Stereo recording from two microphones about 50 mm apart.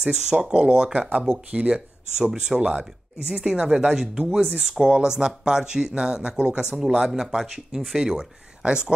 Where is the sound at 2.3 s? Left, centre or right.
Centre.